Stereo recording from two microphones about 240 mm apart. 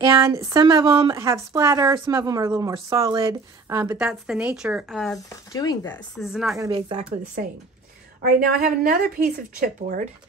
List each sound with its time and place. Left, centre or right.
0.0 s a woman's voice: centre
5.5 s speech: centre
6.1 s a woman's voice: centre
6.6 s speech: centre
8.2 s speech: right